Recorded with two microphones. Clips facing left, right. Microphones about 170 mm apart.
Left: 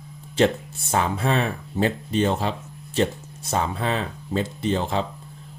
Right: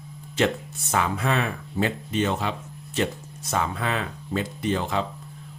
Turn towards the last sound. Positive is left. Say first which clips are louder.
# left 2 dB
turn(degrees=30)  # may be behind; listen again after turning